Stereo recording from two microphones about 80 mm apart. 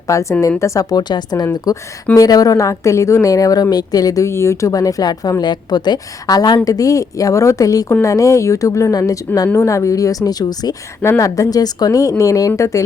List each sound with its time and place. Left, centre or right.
0.1 s a woman's voice: left
1.7 s a woman's voice: left
4.3 s speech: left
4.7 s a woman's voice: left
5.4 s a woman's voice: left
6.7 s a woman's voice: left